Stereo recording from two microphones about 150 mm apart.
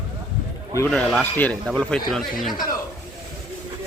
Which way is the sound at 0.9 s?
5° left (ahead or behind).